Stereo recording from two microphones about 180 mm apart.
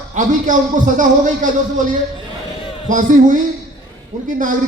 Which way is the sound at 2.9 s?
45° right (ahead or behind).